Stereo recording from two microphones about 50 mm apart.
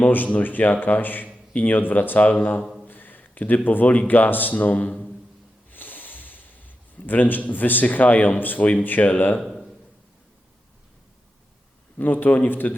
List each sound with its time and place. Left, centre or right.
0.0 s a sound: left
0.3 s speech: left
5.7 s music: left
7.1 s speech: left
9.4 s a sound: centre
11.9 s speech: left